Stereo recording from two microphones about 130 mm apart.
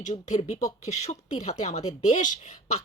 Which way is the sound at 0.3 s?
60° left (ahead or behind).